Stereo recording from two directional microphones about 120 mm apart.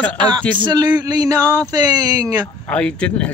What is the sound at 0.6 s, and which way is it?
Speech, 35° right (ahead or behind).